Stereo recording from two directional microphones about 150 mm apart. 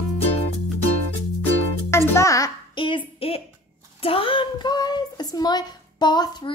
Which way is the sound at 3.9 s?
40° left (ahead or behind).